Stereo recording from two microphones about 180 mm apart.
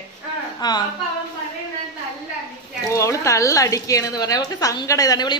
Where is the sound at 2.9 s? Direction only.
15° left (ahead or behind).